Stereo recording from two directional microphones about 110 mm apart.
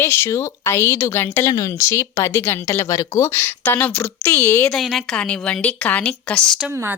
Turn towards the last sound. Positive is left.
turn(degrees=-20)  # may be behind; listen again after turning